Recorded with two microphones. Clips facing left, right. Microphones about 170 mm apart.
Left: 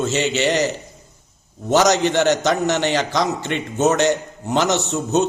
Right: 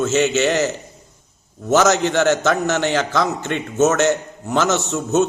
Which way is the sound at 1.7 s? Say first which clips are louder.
Even; 15° left (ahead or behind).